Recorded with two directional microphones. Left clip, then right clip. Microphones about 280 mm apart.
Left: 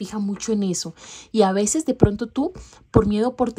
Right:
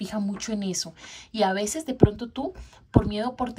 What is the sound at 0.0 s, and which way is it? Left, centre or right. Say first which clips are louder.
Speech: left 3 dB; centre.